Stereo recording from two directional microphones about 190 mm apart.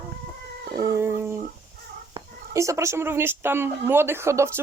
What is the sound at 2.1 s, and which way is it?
A woman's voice, 15° right (ahead or behind).